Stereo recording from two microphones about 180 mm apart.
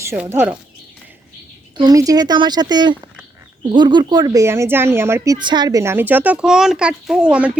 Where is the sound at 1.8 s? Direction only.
20° right (ahead or behind).